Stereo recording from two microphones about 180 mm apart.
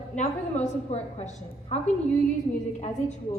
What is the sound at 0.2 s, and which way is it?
A woman's voice, 40° left (ahead or behind).